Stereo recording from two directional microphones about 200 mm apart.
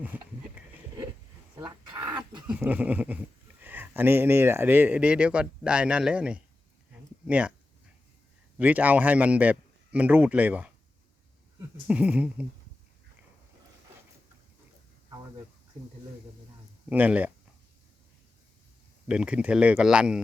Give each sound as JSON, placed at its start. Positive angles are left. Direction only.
{"t": 0.6, "sound": "a sound", "side_deg": -10}
{"t": 1.5, "sound": "roaring cats", "side_deg": -15}
{"t": 2.5, "sound": "speech", "side_deg": -10}
{"t": 8.5, "sound": "speech", "side_deg": -5}
{"t": 11.9, "sound": "speech", "side_deg": -5}
{"t": 16.9, "sound": "speech", "side_deg": -10}
{"t": 19.0, "sound": "speech", "side_deg": -5}